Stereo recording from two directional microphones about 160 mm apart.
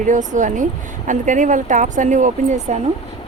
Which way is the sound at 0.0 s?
50° right (ahead or behind).